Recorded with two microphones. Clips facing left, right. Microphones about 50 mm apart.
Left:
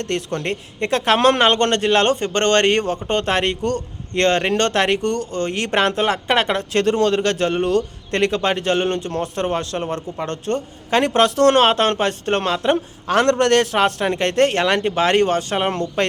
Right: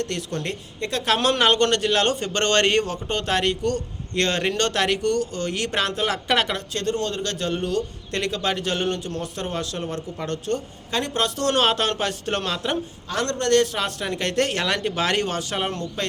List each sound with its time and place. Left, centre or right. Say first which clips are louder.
0.0 s a man's voice: left 4 dB; left
3.1 s a man's voice: left 5 dB; left
6.7 s a man's voice: left 9 dB; left
11.6 s speech: left 5 dB; left
13.1 s a man's voice: left 7 dB; left
13.7 s speech: left 8 dB; left
15.7 s speech: left 8 dB; left